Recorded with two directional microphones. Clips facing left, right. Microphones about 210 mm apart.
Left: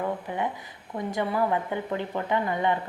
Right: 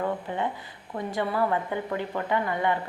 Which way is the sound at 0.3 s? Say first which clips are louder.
Even; 15° left (ahead or behind).